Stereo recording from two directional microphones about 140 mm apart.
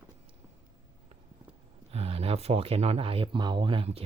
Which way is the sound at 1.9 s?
45° right (ahead or behind).